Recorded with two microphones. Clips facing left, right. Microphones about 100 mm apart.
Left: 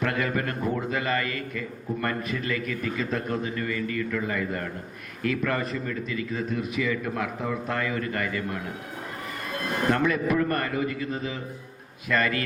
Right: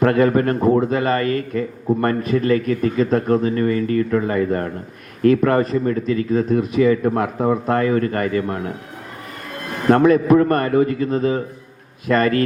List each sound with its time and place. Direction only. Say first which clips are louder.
0.0 s a man's voice: right 12 dB; 40° right (ahead or behind)
9.9 s a man's voice: right 13 dB; 40° right (ahead or behind)